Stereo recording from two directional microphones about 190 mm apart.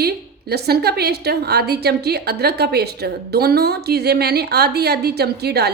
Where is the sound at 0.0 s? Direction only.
55° right (ahead or behind).